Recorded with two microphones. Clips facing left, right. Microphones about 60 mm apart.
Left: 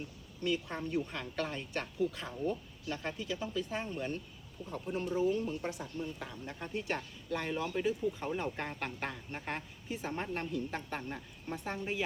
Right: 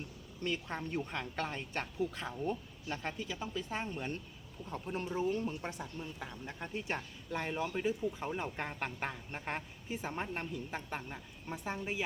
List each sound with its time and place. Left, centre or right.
0.4 s a woman's voice: right
5.8 s speech: centre